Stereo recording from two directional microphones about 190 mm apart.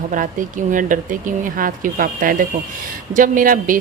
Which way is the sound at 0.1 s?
45° right (ahead or behind).